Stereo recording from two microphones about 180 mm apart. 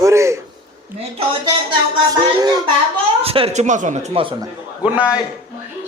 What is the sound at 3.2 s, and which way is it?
Speech, 30° right (ahead or behind).